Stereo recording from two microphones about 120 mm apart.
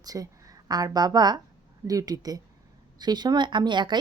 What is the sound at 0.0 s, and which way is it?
A woman's voice, 30° right (ahead or behind).